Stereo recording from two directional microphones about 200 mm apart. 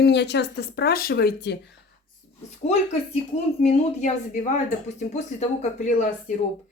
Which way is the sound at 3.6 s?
35° left (ahead or behind).